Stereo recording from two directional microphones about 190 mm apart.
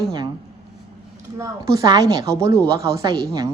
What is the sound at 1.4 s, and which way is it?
A woman's voice, 20° right (ahead or behind).